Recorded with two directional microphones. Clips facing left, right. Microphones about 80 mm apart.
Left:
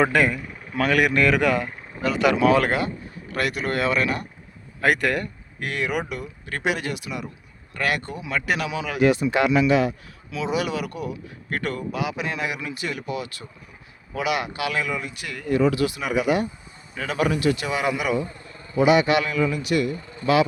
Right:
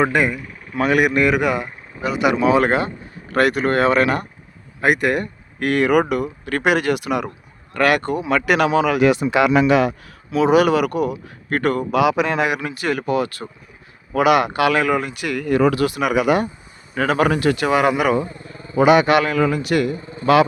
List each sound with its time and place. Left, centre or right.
0.0 s speech: centre
0.8 s speech: centre
2.6 s speech: right
4.8 s speech: centre
5.5 s speech: right
8.3 s speech: right
10.3 s speech: right
11.9 s speech: right
12.6 s speech: right